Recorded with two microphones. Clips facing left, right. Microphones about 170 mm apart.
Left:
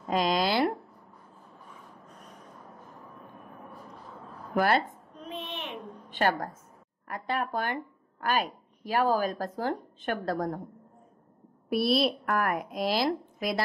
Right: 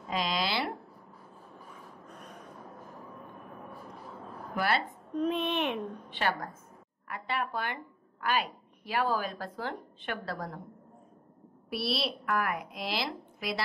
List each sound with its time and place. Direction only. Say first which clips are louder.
0.1 s speech: left 6 dB; 45° left (ahead or behind)
4.6 s a woman's voice: left 5 dB; 45° left (ahead or behind)
5.2 s a child's voice: right 9 dB; 65° right (ahead or behind)
6.0 s a woman's voice: left 7 dB; 45° left (ahead or behind)
11.7 s a woman's voice: left 8 dB; 45° left (ahead or behind)